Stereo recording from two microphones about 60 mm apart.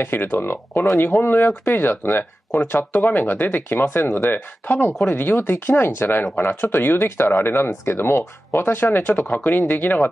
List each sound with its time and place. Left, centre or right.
0.0 s speech: left